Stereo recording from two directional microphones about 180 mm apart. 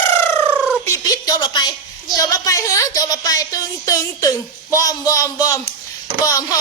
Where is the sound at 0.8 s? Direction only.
20° left (ahead or behind).